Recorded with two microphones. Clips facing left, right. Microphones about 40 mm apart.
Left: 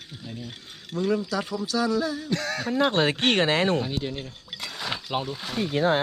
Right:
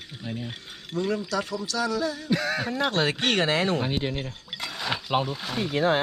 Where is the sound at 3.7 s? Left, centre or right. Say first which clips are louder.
Even; right.